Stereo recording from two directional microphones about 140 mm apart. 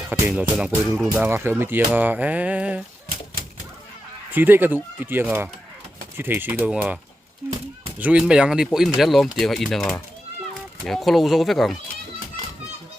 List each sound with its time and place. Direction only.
0.1 s speech: 10° right (ahead or behind)
4.3 s speech: 15° right (ahead or behind)